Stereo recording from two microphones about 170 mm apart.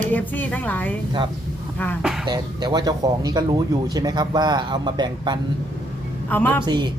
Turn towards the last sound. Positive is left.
turn(degrees=-25)  # may be behind; listen again after turning